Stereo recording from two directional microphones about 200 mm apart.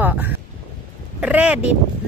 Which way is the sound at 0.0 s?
10° right (ahead or behind).